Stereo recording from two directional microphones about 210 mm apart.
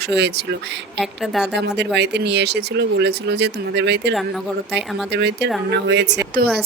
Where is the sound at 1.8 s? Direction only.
55° right (ahead or behind).